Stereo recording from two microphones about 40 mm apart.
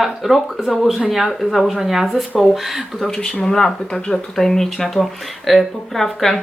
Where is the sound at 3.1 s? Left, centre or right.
Centre.